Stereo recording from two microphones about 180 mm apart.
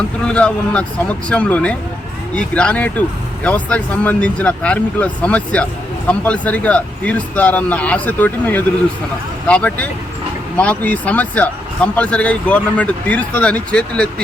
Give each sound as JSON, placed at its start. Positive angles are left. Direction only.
{"t": 0.3, "sound": "speech", "side_deg": 5}